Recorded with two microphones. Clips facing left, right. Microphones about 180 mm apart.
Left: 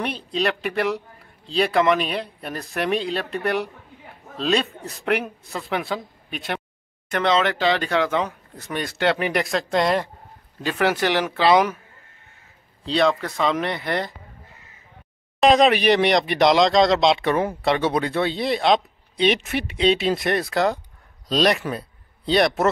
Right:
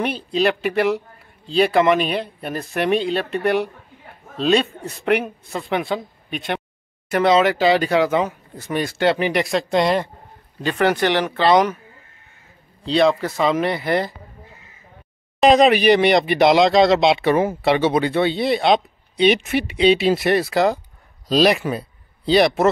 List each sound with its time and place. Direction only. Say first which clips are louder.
0.0 s speech: right 5 dB; centre (ahead or behind)
12.8 s speech: right 3 dB; centre (ahead or behind)
15.4 s speech: right 3 dB; centre (ahead or behind)